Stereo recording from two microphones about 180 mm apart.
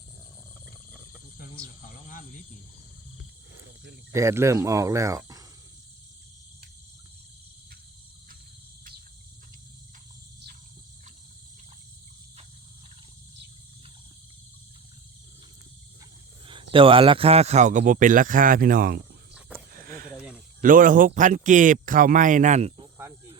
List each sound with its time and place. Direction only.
4.1 s speech: 15° right (ahead or behind)
16.5 s speech: 30° right (ahead or behind); by 19.0 s 55° right (ahead or behind)
19.3 s wild animals: 5° right (ahead or behind)
19.7 s a sound: 55° right (ahead or behind)
20.1 s snake: 5° right (ahead or behind)
20.6 s speech: 50° right (ahead or behind)
23.0 s cricket: 15° right (ahead or behind)